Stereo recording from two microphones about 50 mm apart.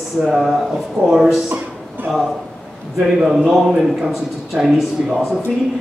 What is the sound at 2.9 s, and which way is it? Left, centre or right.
A man's voice, centre.